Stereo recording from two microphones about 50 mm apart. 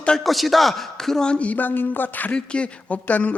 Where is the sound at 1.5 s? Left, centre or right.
Left.